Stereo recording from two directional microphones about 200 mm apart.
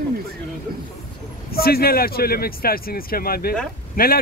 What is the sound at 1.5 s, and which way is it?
Speech, 50° left (ahead or behind).